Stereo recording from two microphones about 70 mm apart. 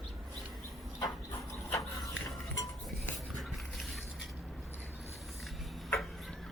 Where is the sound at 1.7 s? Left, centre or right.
Left.